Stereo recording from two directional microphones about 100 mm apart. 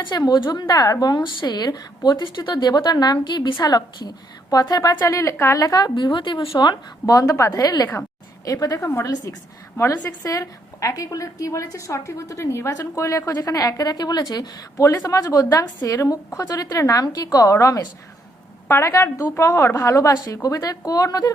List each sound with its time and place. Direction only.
0.0 s a woman's voice: 45° left (ahead or behind)
4.9 s a woman's voice: 30° left (ahead or behind); by 6.5 s 55° left (ahead or behind)
7.1 s a woman's voice: 35° left (ahead or behind)